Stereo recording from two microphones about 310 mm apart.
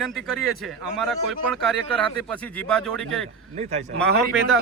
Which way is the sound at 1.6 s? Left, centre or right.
Centre.